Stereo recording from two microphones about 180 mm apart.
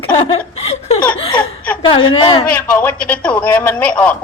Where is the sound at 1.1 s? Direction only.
30° left (ahead or behind).